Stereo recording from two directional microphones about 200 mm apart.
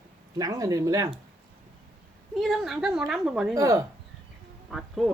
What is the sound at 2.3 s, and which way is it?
A woman's voice, centre (ahead or behind).